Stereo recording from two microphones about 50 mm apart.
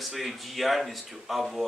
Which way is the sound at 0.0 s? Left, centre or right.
Centre.